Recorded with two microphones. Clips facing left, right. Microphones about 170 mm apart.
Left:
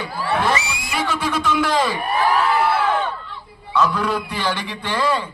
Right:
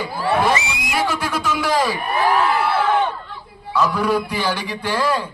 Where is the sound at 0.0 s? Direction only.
10° right (ahead or behind).